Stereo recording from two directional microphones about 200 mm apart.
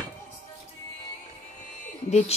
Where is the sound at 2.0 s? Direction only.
35° left (ahead or behind).